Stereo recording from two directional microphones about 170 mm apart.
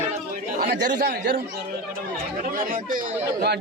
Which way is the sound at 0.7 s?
70° right (ahead or behind).